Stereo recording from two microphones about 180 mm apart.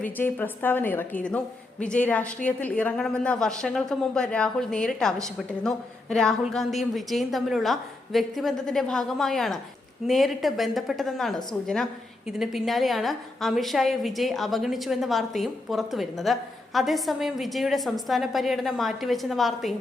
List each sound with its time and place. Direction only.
0.0 s a woman's voice: 10° left (ahead or behind)